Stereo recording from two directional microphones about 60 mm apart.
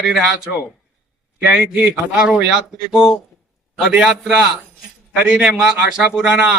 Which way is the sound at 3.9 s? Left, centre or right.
Centre.